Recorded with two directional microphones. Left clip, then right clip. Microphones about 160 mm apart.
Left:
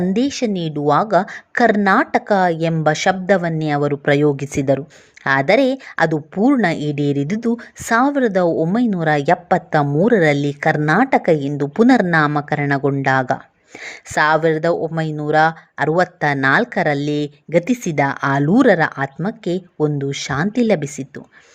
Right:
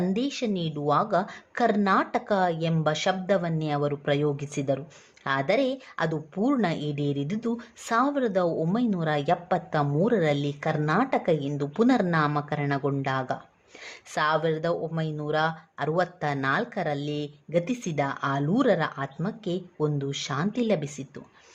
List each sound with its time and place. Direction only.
0.1 s speech: 35° left (ahead or behind)